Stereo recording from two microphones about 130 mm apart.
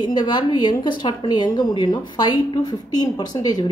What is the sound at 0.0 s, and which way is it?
A woman's voice, 35° left (ahead or behind).